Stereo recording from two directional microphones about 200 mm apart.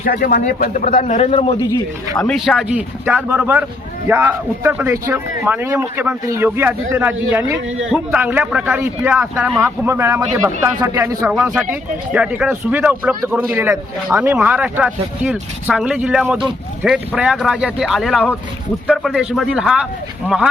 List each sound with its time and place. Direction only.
0.0 s speech: 45° left (ahead or behind)
0.9 s a man's voice: 35° left (ahead or behind)
2.2 s a man's voice: centre (ahead or behind)